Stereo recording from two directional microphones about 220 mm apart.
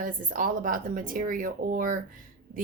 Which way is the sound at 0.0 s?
40° right (ahead or behind).